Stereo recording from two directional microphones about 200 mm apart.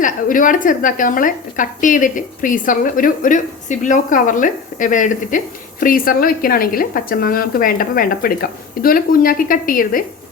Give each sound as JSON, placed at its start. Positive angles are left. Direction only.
{"t": 0.0, "sound": "a woman's voice", "side_deg": 40}